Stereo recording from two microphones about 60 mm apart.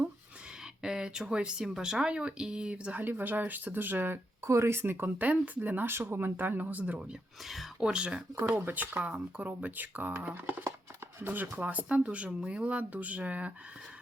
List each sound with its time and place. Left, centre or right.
0.8 s speech: centre
3.0 s speech: right
4.4 s speech: right
7.4 s speech: centre
7.8 s speech: centre
8.5 s speech: right
9.0 s speech: centre